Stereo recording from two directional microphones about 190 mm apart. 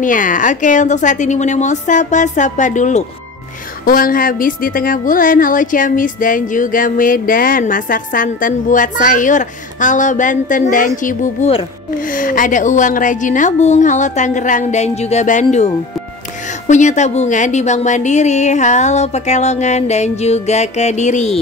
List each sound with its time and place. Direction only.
0.0 s a woman's voice: 45° left (ahead or behind)
11.1 s a woman's voice: 35° left (ahead or behind)
12.2 s a woman's voice: 45° left (ahead or behind)